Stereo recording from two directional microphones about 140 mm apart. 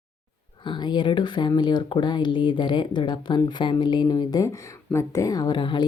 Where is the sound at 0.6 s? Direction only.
35° left (ahead or behind).